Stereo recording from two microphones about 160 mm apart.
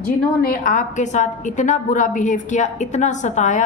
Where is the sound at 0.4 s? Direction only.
60° left (ahead or behind).